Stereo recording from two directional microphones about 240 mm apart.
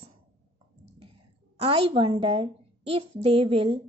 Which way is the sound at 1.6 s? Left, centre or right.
Right.